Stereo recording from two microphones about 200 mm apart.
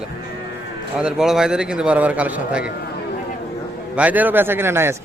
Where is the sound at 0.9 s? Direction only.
5° right (ahead or behind).